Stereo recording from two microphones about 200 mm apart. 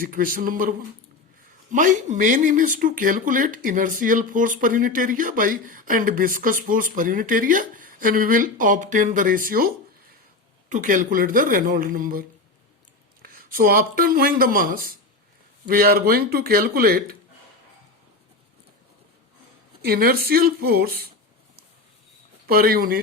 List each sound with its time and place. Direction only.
0.0 s speech: 45° right (ahead or behind)
10.7 s speech: 40° right (ahead or behind)
13.2 s speech: 45° right (ahead or behind)
19.8 s speech: 50° right (ahead or behind)
22.4 s speech: 50° right (ahead or behind)